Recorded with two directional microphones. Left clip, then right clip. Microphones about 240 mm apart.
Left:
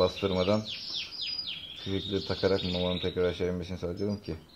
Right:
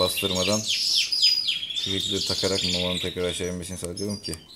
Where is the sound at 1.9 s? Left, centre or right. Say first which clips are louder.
Right 3 dB; right.